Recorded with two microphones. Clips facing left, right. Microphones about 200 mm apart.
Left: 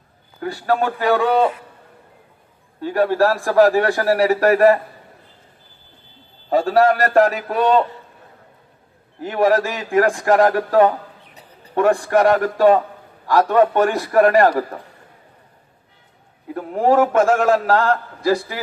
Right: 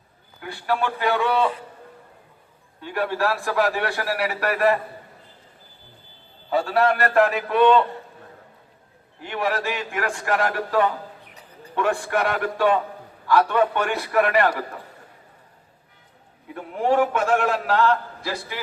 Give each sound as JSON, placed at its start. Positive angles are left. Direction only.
{"t": 0.3, "sound": "a man's voice", "side_deg": 40}
{"t": 2.8, "sound": "a man's voice", "side_deg": 45}
{"t": 6.5, "sound": "a man's voice", "side_deg": 40}
{"t": 9.2, "sound": "a man's voice", "side_deg": 40}
{"t": 16.6, "sound": "a man's voice", "side_deg": 45}